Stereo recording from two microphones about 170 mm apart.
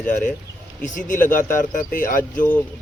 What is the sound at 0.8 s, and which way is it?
Speech, 50° left (ahead or behind).